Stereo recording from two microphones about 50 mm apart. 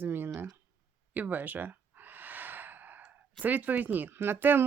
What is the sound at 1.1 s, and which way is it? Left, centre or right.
Gasp, right.